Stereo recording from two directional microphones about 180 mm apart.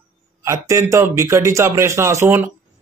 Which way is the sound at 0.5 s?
15° right (ahead or behind).